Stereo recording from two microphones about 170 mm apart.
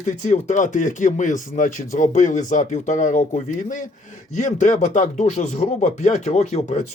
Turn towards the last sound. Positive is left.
turn(degrees=45)  # may be behind; listen again after turning